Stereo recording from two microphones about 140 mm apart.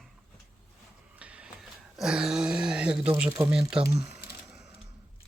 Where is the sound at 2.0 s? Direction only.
5° right (ahead or behind).